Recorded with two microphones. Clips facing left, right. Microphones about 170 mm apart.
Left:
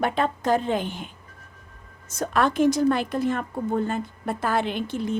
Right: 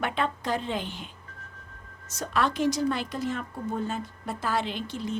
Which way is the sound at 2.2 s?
50° left (ahead or behind).